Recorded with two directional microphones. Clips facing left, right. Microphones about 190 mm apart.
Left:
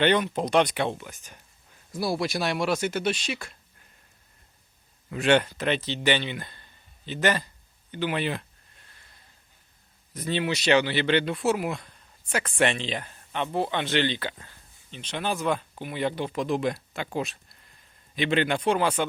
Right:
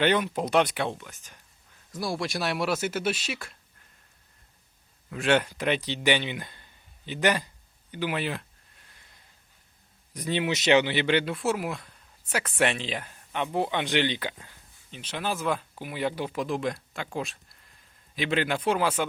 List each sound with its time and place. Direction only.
0.0 s speech: 5° right (ahead or behind)
1.0 s speech: 20° left (ahead or behind)
1.9 s speech: 5° left (ahead or behind)
5.1 s speech: centre (ahead or behind)
10.2 s speech: 15° right (ahead or behind)